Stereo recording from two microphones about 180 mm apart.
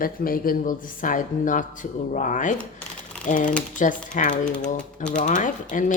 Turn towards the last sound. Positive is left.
turn(degrees=45)  # may be behind; listen again after turning